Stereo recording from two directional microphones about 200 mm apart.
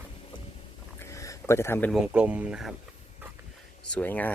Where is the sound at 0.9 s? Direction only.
15° left (ahead or behind).